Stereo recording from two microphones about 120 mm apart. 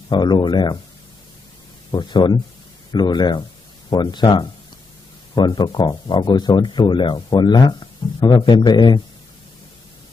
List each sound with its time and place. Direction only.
0.1 s speech: 35° left (ahead or behind)
1.9 s speech: 40° left (ahead or behind)